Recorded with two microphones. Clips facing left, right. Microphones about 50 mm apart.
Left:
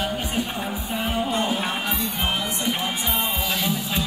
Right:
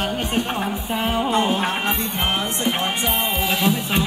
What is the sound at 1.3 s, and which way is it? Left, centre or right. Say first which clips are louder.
Music: right 4 dB; right.